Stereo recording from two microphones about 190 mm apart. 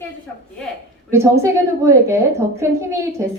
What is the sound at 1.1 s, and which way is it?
A woman's voice, 15° right (ahead or behind).